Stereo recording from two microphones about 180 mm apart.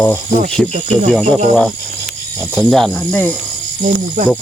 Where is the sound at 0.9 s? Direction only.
Centre (ahead or behind).